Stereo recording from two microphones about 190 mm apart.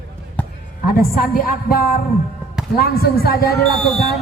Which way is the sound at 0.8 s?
50° left (ahead or behind).